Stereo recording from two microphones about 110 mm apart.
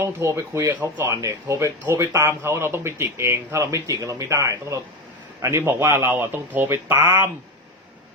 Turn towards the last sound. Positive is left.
turn(degrees=-20)  # may be behind; listen again after turning